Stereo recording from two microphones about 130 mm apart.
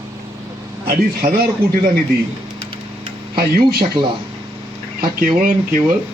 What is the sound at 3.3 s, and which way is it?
Speech, 40° right (ahead or behind).